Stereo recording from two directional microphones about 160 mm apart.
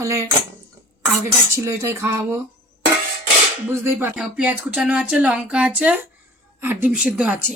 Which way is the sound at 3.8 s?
10° right (ahead or behind).